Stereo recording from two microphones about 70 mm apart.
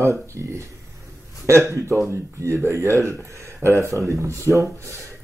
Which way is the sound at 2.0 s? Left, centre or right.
Right.